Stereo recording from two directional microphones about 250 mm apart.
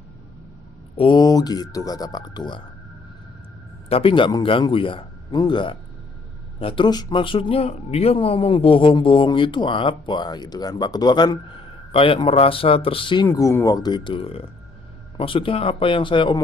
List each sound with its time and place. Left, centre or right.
0.9 s speech: centre
3.9 s speech: left